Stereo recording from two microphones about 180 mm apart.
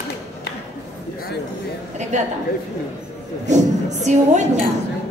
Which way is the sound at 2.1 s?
40° right (ahead or behind).